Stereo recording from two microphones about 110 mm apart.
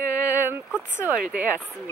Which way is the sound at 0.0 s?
15° right (ahead or behind).